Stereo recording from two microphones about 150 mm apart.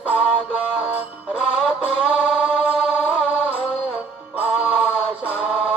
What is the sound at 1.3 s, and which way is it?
Music, centre (ahead or behind).